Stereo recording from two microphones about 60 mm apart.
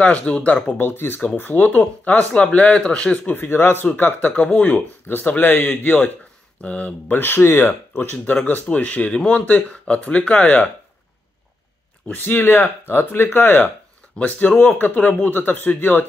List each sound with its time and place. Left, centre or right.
0.0 s speech: centre
0.7 s speech: left; by 3.2 s centre
3.3 s speech: left
3.8 s speech: left
7.9 s speech: left
12.1 s speech: left